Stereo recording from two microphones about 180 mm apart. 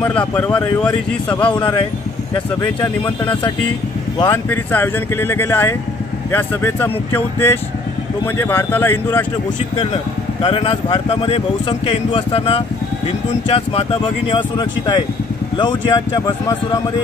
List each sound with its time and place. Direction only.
0.4 s speech: 10° left (ahead or behind)
2.3 s speech: 20° left (ahead or behind)
4.2 s speech: 15° left (ahead or behind)
10.4 s speech: 30° left (ahead or behind)